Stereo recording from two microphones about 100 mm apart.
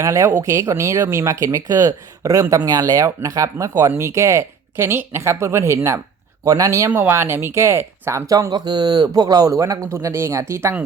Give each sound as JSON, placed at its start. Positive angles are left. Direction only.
{"t": 0.0, "sound": "speech", "side_deg": -30}
{"t": 8.3, "sound": "speech", "side_deg": -40}